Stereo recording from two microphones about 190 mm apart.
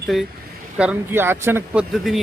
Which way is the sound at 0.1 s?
Centre (ahead or behind).